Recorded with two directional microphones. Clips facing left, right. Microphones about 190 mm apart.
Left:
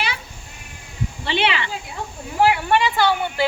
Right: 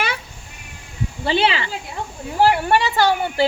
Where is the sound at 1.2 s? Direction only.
35° right (ahead or behind).